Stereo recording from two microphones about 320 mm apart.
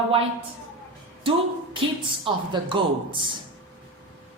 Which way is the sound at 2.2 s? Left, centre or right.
Centre.